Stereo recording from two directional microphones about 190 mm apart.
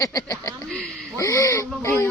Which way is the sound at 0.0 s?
20° left (ahead or behind).